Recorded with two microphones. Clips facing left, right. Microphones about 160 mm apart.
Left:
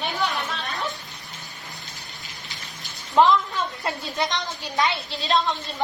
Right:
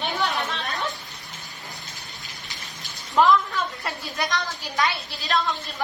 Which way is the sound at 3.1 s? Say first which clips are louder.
Left 1 dB; 20° left (ahead or behind).